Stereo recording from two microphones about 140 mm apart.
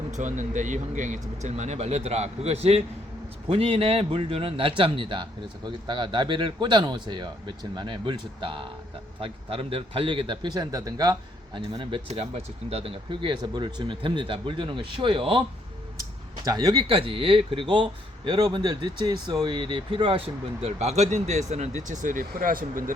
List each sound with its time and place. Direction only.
0.1 s speech: 60° right (ahead or behind); by 16.8 s 30° right (ahead or behind)
16.8 s speech: 40° right (ahead or behind); by 22.8 s 85° right